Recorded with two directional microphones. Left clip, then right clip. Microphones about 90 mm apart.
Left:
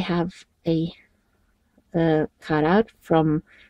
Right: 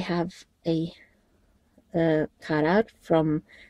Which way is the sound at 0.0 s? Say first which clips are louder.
Left 3 dB; 20° right (ahead or behind).